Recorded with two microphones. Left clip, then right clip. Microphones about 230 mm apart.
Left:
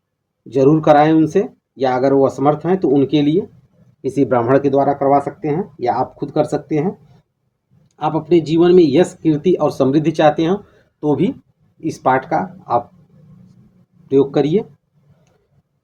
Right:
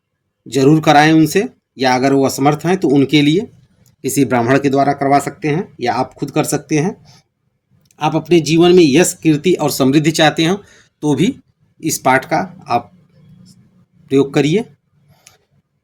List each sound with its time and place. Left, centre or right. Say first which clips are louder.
0.4 s speech: even; right
7.9 s speech: right 2 dB; right
14.1 s speech: right 1 dB; right